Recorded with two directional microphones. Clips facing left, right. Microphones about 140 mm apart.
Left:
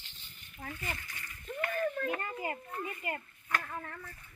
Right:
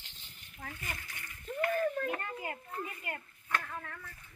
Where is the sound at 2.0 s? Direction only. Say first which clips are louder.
Left 2 dB; centre (ahead or behind).